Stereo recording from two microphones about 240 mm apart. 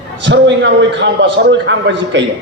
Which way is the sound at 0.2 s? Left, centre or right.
Right.